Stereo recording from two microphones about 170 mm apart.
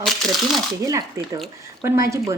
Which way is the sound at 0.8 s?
20° right (ahead or behind).